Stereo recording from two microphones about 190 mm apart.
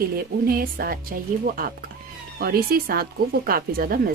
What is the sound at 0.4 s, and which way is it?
A woman's voice, 50° right (ahead or behind).